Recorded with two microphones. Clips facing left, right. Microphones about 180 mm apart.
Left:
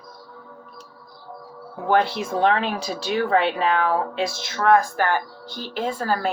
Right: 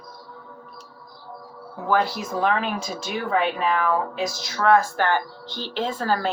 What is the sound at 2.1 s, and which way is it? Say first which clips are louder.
Speech: left 3 dB; 25° left (ahead or behind).